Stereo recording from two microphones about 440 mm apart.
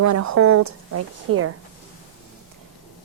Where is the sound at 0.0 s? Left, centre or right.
Right.